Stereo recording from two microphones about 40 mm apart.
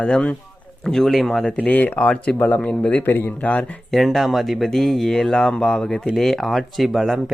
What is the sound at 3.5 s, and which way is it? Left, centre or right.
Speech, left.